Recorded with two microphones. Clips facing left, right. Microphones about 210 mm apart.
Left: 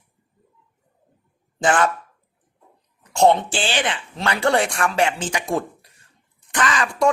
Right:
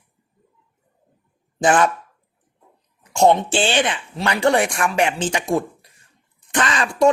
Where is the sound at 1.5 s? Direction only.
20° right (ahead or behind).